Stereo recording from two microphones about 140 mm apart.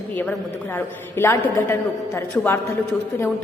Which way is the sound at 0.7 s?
15° left (ahead or behind).